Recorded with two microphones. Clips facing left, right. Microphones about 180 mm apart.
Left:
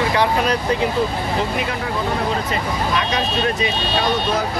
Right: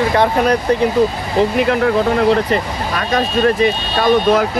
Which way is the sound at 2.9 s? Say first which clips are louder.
Right 7 dB; 50° right (ahead or behind).